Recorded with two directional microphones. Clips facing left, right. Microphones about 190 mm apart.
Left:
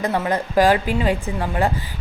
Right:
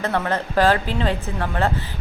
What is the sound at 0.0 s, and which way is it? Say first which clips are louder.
A woman's voice: left 1 dB; 10° left (ahead or behind).